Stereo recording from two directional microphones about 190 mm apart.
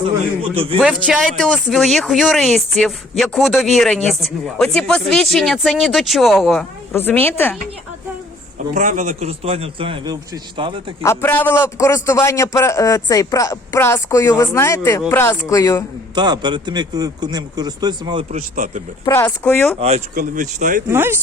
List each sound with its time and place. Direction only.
0.5 s a man's voice: 30° right (ahead or behind)
1.0 s speech: centre (ahead or behind)
8.7 s a man's voice: 45° right (ahead or behind); by 10.8 s 25° right (ahead or behind)
11.0 s a man's voice: 10° left (ahead or behind)
16.1 s a man's voice: 20° right (ahead or behind)
18.3 s a man's voice: 45° right (ahead or behind)
19.0 s a man's voice: 10° left (ahead or behind)
20.1 s speech: 45° right (ahead or behind)
20.9 s speech: 10° right (ahead or behind)